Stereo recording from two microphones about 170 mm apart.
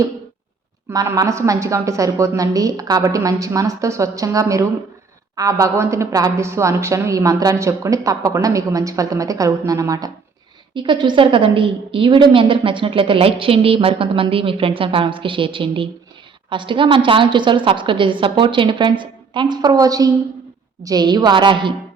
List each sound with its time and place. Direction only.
0.9 s a woman's voice: 20° right (ahead or behind)